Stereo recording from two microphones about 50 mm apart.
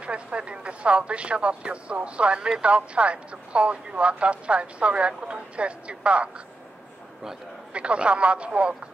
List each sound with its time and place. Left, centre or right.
0.0 s speech: right
7.7 s speech: right